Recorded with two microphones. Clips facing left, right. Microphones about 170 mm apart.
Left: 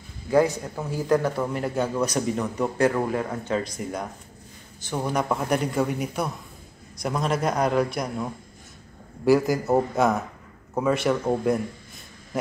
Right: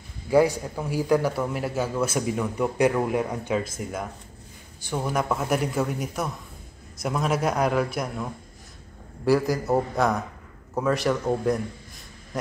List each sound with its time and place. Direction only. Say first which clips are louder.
0.3 s a man's voice: right 1 dB; 10° right (ahead or behind)
3.1 s a man's voice: right 1 dB; 15° right (ahead or behind)
3.5 s a man's voice: left 1 dB; 5° right (ahead or behind)